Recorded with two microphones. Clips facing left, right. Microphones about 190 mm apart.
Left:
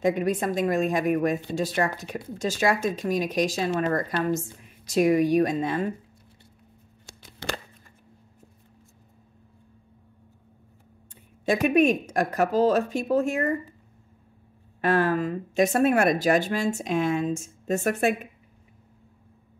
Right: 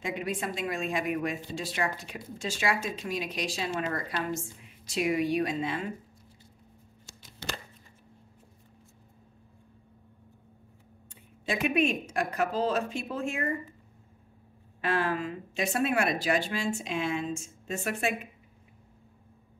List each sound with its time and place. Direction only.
0.0 s speech: 45° left (ahead or behind)
7.1 s a sound: 60° left (ahead or behind)
11.4 s speech: 45° left (ahead or behind)
14.8 s speech: 45° left (ahead or behind)